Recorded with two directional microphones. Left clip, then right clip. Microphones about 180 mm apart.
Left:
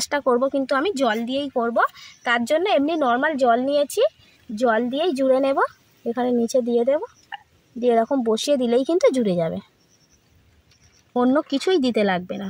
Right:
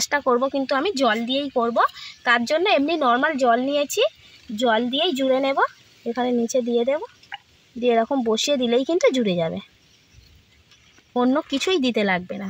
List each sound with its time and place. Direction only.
0.0 s speech: 15° left (ahead or behind)
11.1 s speech: 20° left (ahead or behind)